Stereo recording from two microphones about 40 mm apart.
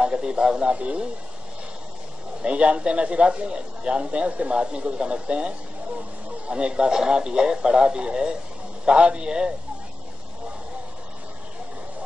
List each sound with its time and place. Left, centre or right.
0.0 s speech: right
0.7 s speech: right
2.4 s a man's voice: right
6.5 s a man's voice: right